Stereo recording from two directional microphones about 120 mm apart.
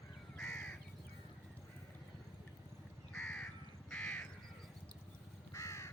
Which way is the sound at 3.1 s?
20° left (ahead or behind).